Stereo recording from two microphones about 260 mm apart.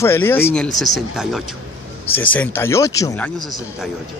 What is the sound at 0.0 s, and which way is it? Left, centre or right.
Speech, centre.